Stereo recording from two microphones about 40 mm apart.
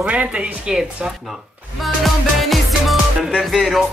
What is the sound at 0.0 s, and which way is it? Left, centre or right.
Speech, right.